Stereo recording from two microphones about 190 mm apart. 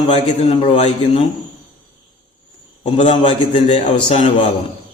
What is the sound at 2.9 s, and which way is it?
Speech, 35° left (ahead or behind).